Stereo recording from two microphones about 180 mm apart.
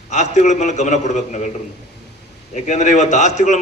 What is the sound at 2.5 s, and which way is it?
A man's voice, 40° left (ahead or behind).